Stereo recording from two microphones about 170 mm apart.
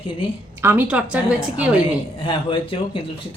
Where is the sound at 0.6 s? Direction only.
10° right (ahead or behind).